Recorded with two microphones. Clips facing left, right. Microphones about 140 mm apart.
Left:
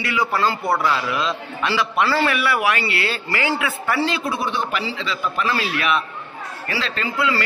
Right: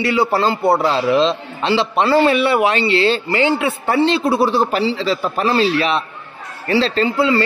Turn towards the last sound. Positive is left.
turn(degrees=-30)  # may be behind; listen again after turning